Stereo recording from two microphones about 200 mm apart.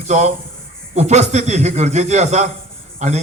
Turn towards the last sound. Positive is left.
turn(degrees=-35)  # may be behind; listen again after turning